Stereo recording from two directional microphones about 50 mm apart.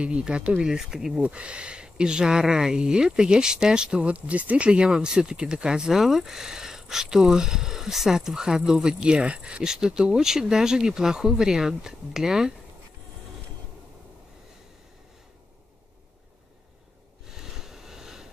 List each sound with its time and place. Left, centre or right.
0.0 s speech: centre
0.7 s speech: centre
1.2 s speech: right
9.6 s speech: centre
17.4 s vehicle: centre